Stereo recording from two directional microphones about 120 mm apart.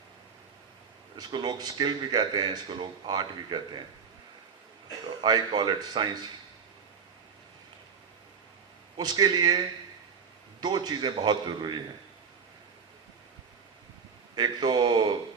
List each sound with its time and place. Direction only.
1.1 s a man's voice: 40° right (ahead or behind)
5.0 s speech: 35° right (ahead or behind)
9.0 s a man's voice: 35° right (ahead or behind)
14.3 s a man's voice: 35° right (ahead or behind)